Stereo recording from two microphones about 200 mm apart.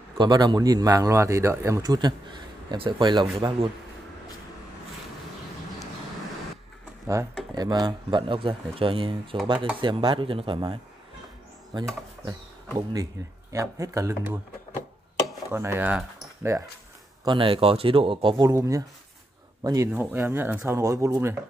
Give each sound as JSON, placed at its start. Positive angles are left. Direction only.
{"t": 0.2, "sound": "speech", "side_deg": -20}
{"t": 7.5, "sound": "speech", "side_deg": -20}
{"t": 15.5, "sound": "speech", "side_deg": -10}
{"t": 16.5, "sound": "speech", "side_deg": -15}
{"t": 18.5, "sound": "speech", "side_deg": -15}